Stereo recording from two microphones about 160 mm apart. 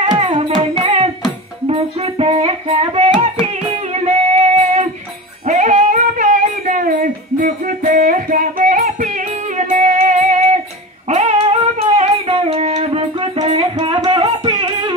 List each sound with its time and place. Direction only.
0.0 s music: 35° right (ahead or behind)
5.5 s child singing: 50° right (ahead or behind)
9.6 s music: 50° right (ahead or behind)
11.1 s singing: 40° right (ahead or behind)